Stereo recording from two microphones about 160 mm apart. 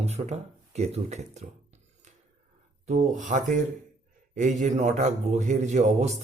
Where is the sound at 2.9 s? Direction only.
50° right (ahead or behind).